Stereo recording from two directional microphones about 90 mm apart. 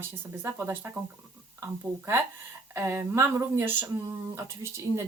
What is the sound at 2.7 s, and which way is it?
Speech, 30° right (ahead or behind).